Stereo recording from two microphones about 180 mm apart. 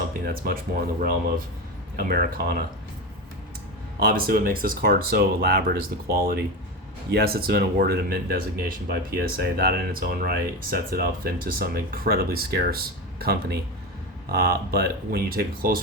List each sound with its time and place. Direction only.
0.3 s speech: 55° right (ahead or behind)
4.0 s speech: 55° right (ahead or behind)